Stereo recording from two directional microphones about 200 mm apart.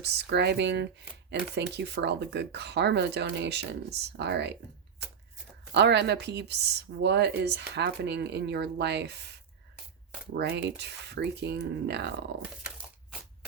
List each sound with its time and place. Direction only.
0.0 s speech: 55° right (ahead or behind)
5.7 s speech: 55° right (ahead or behind)